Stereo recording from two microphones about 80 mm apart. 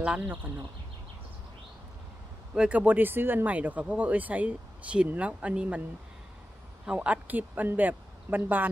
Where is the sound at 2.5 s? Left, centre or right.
Centre.